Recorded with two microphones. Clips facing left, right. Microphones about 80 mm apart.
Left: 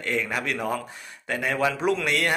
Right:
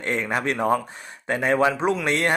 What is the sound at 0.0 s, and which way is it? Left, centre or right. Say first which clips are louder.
Speech: right 3 dB; right.